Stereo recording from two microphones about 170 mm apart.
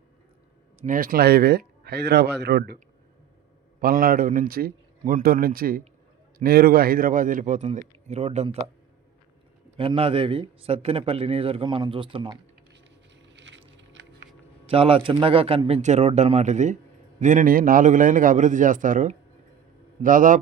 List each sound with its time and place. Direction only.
0.8 s speech: 55° right (ahead or behind); by 2.7 s 75° right (ahead or behind)
3.8 s a man's voice: 60° right (ahead or behind); by 8.4 s 40° right (ahead or behind)
9.7 s a man's voice: 30° right (ahead or behind)
13.3 s a sound: 90° right
14.7 s a man's voice: 35° right (ahead or behind); by 20.4 s 50° right (ahead or behind)